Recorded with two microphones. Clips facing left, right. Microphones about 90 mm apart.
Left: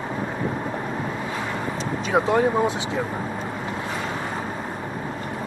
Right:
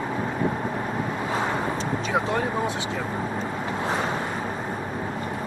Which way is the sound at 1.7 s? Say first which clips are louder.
Left 2 dB; 20° left (ahead or behind).